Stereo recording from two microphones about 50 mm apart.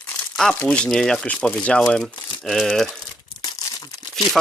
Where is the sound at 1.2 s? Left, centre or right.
Left.